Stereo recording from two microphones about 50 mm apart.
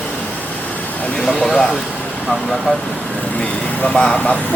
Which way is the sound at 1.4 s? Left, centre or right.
Centre.